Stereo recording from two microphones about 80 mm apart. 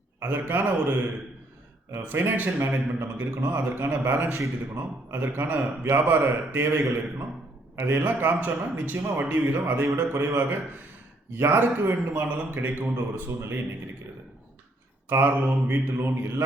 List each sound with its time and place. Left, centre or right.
0.2 s a man's voice: right
15.1 s a man's voice: right